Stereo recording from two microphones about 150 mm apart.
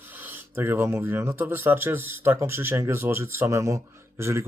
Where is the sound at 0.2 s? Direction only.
15° right (ahead or behind).